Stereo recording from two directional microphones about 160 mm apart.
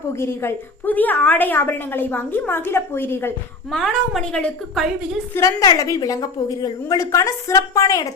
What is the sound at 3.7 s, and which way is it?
A woman's voice, centre (ahead or behind).